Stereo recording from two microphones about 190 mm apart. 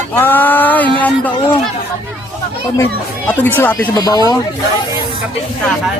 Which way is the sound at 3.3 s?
10° left (ahead or behind).